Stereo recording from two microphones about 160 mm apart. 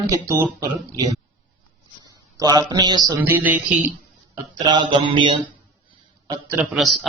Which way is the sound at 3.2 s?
10° right (ahead or behind).